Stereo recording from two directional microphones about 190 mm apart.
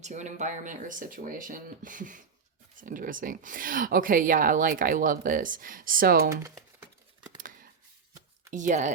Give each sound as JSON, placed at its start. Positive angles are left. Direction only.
{"t": 0.0, "sound": "speech", "side_deg": -40}
{"t": 7.3, "sound": "a sound", "side_deg": -45}
{"t": 8.5, "sound": "speech", "side_deg": -40}